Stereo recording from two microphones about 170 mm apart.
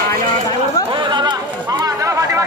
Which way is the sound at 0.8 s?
30° right (ahead or behind).